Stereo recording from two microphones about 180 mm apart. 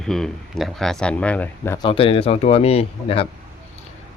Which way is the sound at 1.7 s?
25° left (ahead or behind).